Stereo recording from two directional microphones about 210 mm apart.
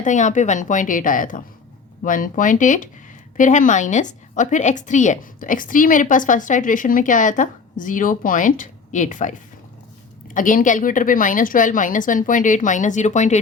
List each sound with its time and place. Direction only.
0.0 s a woman's voice: 35° left (ahead or behind)